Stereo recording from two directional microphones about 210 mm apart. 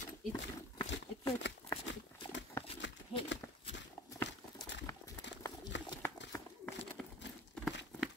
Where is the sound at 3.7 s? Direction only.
55° left (ahead or behind).